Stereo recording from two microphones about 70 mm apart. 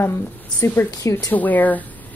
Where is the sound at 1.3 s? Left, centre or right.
Left.